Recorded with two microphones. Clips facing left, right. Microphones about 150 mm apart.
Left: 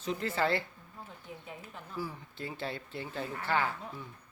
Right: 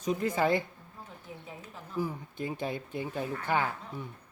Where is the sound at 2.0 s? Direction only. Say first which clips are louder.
Right 6 dB; 20° right (ahead or behind).